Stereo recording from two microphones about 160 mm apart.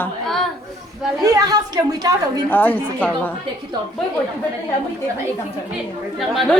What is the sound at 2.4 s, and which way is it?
Speech, 10° left (ahead or behind).